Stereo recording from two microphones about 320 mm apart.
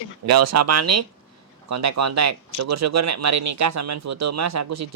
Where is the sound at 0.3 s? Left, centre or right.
Right.